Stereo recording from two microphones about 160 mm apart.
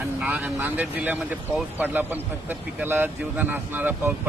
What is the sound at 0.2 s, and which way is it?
Speech, 10° right (ahead or behind).